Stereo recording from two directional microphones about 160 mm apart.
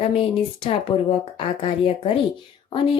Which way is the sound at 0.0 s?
35° left (ahead or behind).